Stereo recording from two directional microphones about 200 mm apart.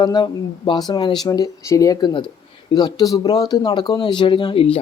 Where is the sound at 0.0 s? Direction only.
20° left (ahead or behind).